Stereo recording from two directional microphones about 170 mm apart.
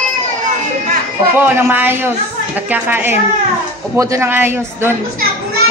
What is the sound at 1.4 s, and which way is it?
A woman's voice, 10° right (ahead or behind).